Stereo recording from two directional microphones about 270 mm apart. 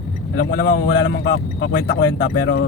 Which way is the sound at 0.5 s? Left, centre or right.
Left.